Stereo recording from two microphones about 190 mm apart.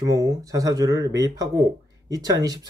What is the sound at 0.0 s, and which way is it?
Speech, 20° right (ahead or behind).